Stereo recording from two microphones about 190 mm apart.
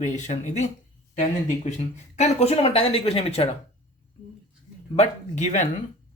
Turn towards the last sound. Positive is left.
turn(degrees=40)  # may be behind; listen again after turning